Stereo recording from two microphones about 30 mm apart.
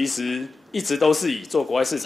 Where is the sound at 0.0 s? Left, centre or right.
Centre.